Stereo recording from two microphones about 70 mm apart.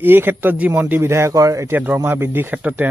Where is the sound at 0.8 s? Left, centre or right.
Right.